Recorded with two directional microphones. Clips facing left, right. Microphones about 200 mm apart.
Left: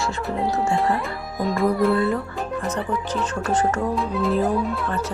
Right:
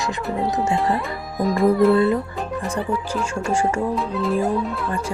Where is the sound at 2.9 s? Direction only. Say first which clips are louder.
Right 1 dB; 10° right (ahead or behind).